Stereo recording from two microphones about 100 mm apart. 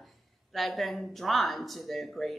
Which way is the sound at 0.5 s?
Centre (ahead or behind).